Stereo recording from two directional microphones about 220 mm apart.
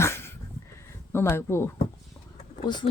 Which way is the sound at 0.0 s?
10° left (ahead or behind).